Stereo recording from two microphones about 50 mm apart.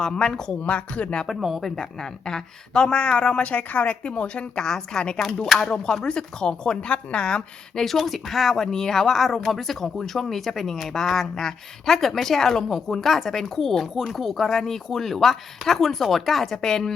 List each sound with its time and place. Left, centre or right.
0.0 s speech: centre
0.6 s speech: left
1.3 s speech: centre
1.7 s speech: centre
7.9 s speech: centre